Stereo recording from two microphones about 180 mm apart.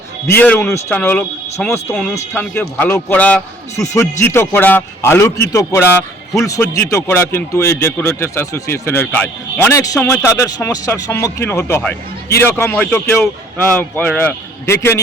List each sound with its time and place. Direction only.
0.3 s speech: 10° left (ahead or behind)